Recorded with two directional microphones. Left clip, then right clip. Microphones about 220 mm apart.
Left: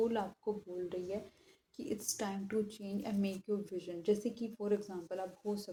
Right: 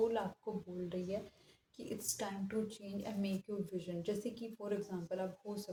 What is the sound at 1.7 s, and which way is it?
Speech, 30° left (ahead or behind).